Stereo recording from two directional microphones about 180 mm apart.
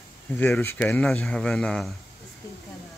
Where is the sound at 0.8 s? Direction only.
Centre (ahead or behind).